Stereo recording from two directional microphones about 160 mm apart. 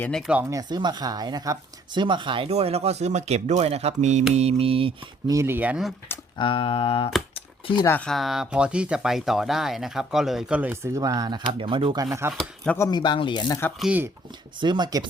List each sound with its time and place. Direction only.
0.0 s speech: centre (ahead or behind)
0.5 s speech: 25° right (ahead or behind)
5.3 s speech: 15° right (ahead or behind)
6.3 s a sound: 35° left (ahead or behind)
7.9 s speech: 10° left (ahead or behind); by 12.0 s 30° right (ahead or behind)
12.7 s speech: 15° left (ahead or behind)
13.0 s speech: 30° left (ahead or behind)
13.7 s speech: 5° right (ahead or behind)
14.6 s speech: 25° right (ahead or behind)